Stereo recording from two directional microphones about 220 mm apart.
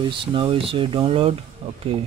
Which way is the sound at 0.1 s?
20° right (ahead or behind).